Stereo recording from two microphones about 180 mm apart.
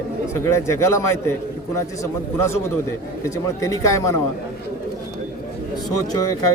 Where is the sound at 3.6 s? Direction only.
15° left (ahead or behind).